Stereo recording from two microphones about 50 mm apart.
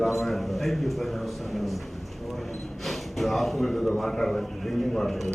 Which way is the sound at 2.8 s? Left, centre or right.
Centre.